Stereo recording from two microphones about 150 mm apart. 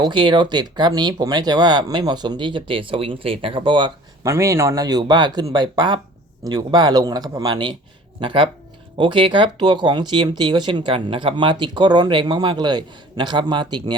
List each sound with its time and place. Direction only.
0.0 s speech: 30° right (ahead or behind)
4.3 s speech: 20° right (ahead or behind)